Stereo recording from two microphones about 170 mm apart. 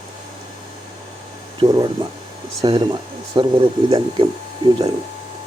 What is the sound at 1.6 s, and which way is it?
Speech, 20° right (ahead or behind).